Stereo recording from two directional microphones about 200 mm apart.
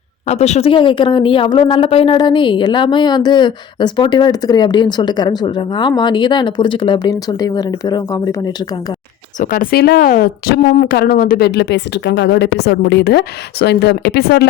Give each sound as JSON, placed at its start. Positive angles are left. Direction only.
{"t": 0.3, "sound": "speech", "side_deg": 35}
{"t": 9.4, "sound": "speech", "side_deg": 45}